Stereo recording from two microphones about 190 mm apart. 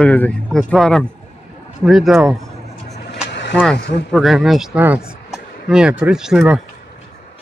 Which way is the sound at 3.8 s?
65° left (ahead or behind).